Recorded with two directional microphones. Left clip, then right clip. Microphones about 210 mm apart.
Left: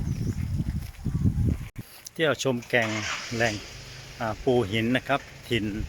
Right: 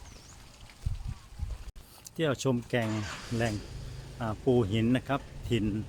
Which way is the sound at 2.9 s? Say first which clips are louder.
Left 7 dB; 30° right (ahead or behind).